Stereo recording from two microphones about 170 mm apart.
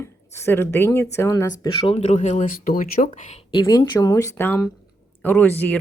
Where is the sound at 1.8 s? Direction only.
35° left (ahead or behind).